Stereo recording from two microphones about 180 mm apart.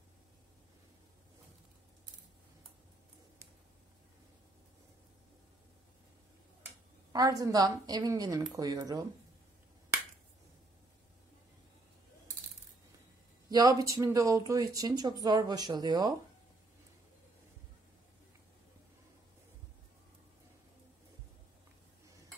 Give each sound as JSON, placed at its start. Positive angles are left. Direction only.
{"t": 7.1, "sound": "speech", "side_deg": -20}
{"t": 13.5, "sound": "speech", "side_deg": -20}